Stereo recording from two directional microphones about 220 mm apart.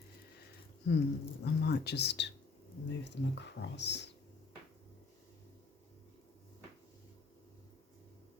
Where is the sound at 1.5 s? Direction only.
50° left (ahead or behind).